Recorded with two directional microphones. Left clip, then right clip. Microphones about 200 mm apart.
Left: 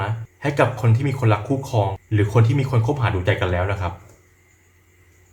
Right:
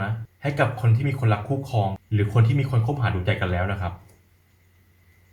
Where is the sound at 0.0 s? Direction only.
25° left (ahead or behind).